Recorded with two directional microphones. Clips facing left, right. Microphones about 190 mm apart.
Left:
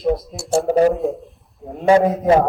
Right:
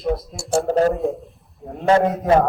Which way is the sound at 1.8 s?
10° left (ahead or behind).